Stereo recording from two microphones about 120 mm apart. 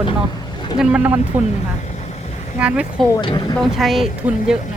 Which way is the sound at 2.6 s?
10° right (ahead or behind).